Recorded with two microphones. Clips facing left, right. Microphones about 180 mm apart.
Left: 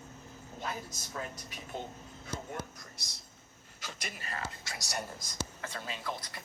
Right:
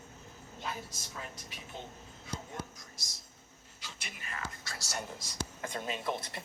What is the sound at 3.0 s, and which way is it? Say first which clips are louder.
Speech: left 1 dB; 60° left (ahead or behind).